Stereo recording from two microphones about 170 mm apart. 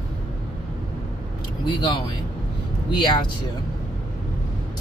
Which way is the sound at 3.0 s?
25° left (ahead or behind).